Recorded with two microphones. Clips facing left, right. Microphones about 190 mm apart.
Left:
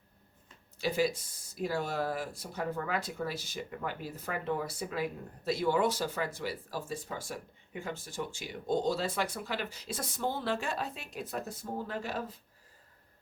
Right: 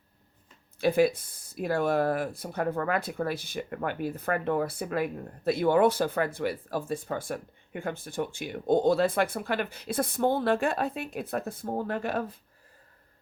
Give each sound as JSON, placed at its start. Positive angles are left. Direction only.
{"t": 0.8, "sound": "speech", "side_deg": -55}